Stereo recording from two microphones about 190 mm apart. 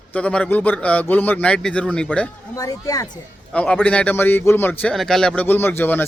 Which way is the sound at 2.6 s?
20° left (ahead or behind).